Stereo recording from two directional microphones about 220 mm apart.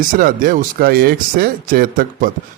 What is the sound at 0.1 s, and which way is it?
Speech, 40° right (ahead or behind).